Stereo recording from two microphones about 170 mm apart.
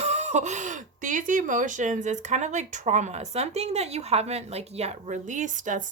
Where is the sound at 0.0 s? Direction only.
40° right (ahead or behind).